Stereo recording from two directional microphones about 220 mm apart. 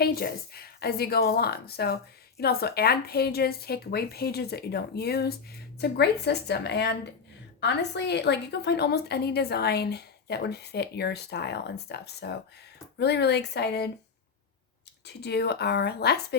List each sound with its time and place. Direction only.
0.0 s a woman's voice: 45° left (ahead or behind)
15.0 s a woman's voice: 50° left (ahead or behind)